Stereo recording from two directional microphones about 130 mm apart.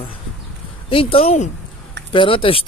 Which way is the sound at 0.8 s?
45° left (ahead or behind).